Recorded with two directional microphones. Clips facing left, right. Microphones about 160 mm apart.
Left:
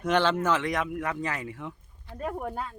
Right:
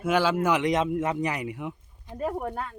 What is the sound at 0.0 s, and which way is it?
Speech, 5° right (ahead or behind).